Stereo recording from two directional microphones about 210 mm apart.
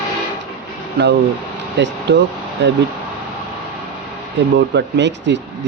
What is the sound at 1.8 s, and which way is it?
Speech, 55° right (ahead or behind).